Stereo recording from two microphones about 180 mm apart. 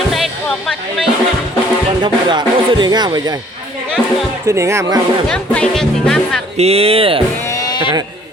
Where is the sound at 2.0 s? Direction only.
25° right (ahead or behind).